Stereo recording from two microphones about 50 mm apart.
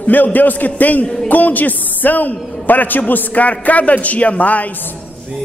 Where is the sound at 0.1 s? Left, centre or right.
Left.